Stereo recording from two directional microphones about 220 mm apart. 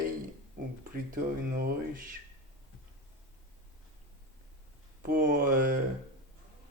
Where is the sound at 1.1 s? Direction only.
40° right (ahead or behind).